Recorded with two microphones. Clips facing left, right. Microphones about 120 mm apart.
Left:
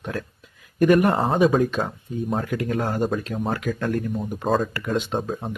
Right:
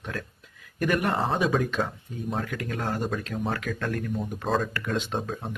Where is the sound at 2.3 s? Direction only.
25° left (ahead or behind).